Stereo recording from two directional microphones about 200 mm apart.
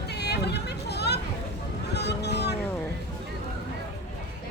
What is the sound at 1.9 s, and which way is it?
Speech, 55° left (ahead or behind).